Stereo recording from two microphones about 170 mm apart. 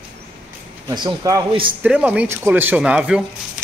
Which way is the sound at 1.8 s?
10° right (ahead or behind).